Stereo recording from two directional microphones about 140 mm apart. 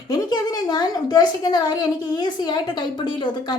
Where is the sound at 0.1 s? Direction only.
30° left (ahead or behind).